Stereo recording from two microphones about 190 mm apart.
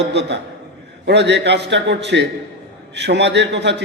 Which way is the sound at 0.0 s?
65° right (ahead or behind).